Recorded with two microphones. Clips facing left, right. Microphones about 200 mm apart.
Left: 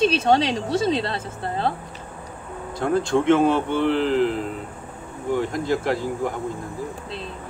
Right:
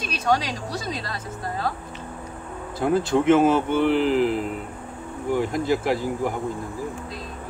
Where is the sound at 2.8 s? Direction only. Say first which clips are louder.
Even; 5° right (ahead or behind).